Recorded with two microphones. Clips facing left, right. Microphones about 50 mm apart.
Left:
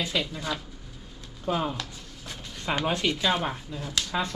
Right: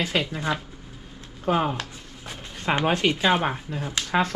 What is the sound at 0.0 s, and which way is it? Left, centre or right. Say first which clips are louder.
Speech: right 4 dB; right.